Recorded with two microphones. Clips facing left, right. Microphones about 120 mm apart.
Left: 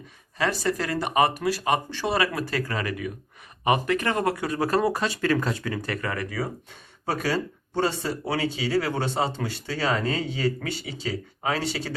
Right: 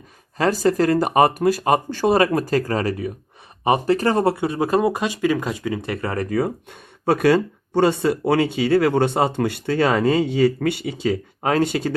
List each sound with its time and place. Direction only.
0.3 s speech: 45° right (ahead or behind)
6.2 s speech: 50° right (ahead or behind)
7.0 s speech: 65° right (ahead or behind)